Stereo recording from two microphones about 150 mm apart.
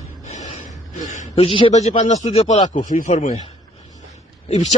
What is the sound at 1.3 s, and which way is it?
Speech, 35° left (ahead or behind).